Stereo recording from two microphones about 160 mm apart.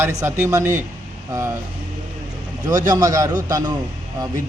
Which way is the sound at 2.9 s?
20° right (ahead or behind).